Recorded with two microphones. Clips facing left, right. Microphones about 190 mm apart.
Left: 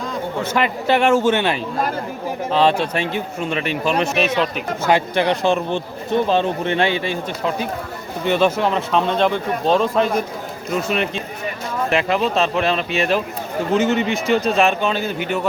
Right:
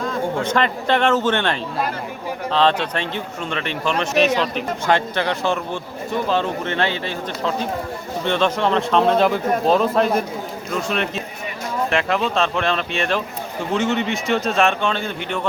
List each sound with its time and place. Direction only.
0.1 s a man's voice: 10° left (ahead or behind)